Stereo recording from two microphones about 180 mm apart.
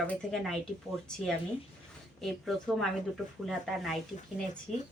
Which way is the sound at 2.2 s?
Centre (ahead or behind).